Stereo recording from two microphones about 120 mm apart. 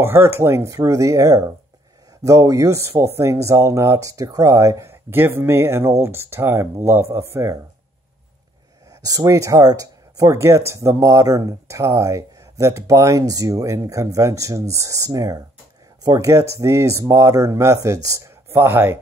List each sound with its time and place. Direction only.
0.0 s speech: 20° right (ahead or behind)
9.0 s speech: 30° right (ahead or behind)